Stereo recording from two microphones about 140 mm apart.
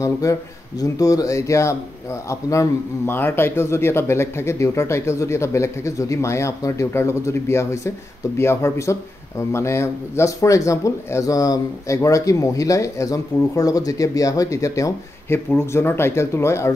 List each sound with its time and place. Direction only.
0.0 s speech: 25° left (ahead or behind)